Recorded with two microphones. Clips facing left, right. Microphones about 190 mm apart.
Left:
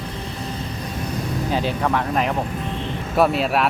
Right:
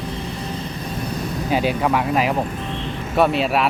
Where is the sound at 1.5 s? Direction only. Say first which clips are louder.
Right 3 dB; 10° right (ahead or behind).